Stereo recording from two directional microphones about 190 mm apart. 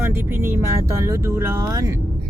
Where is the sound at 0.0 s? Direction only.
10° right (ahead or behind).